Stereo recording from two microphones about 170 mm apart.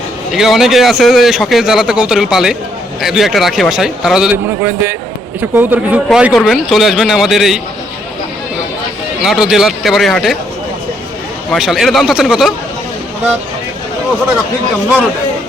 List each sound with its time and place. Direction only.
0.3 s a man's voice: centre (ahead or behind)
9.2 s a man's voice: centre (ahead or behind)
11.5 s a man's voice: centre (ahead or behind)